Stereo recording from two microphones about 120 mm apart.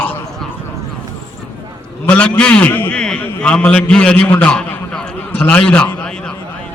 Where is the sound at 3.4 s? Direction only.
10° left (ahead or behind).